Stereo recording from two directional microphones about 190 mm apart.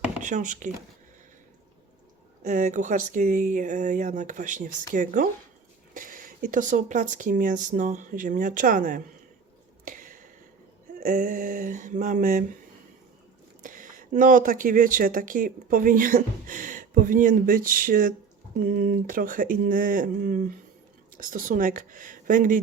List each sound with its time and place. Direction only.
0.2 s speech: 40° right (ahead or behind)
2.4 s speech: 40° right (ahead or behind)
9.8 s a sound: 45° right (ahead or behind)
11.0 s speech: 45° right (ahead or behind)
13.6 s speech: 45° right (ahead or behind)